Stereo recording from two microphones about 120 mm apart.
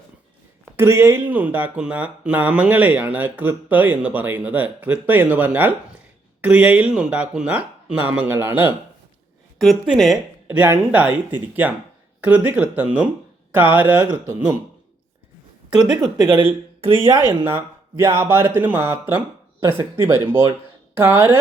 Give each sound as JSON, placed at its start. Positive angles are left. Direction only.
{"t": 0.6, "sound": "speech", "side_deg": -20}
{"t": 9.6, "sound": "a woman's voice", "side_deg": 0}
{"t": 16.2, "sound": "speech", "side_deg": -40}
{"t": 17.4, "sound": "speech", "side_deg": -20}